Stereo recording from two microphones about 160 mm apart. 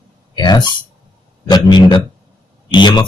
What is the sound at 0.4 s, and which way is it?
Speech, 25° left (ahead or behind).